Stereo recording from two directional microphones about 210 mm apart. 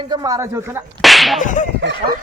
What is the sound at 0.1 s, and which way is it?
Speech, 15° right (ahead or behind).